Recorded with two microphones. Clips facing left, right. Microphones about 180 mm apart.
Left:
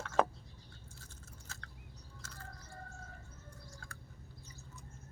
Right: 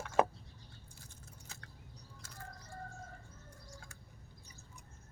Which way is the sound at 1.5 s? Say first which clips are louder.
Left 2 dB; 15° right (ahead or behind).